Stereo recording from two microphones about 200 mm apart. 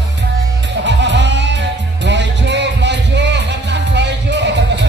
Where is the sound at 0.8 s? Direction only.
65° right (ahead or behind).